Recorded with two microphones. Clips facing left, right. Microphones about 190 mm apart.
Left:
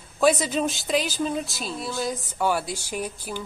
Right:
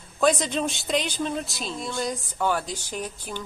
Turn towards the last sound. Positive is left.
turn(degrees=10)  # may be behind; listen again after turning